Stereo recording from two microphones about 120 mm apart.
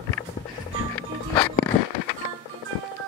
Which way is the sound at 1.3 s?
30° left (ahead or behind).